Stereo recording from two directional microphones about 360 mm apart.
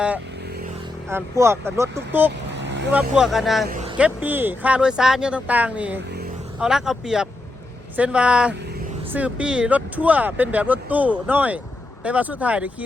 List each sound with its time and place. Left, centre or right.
1.1 s speech: centre
2.6 s vehicle: right
3.2 s speech: centre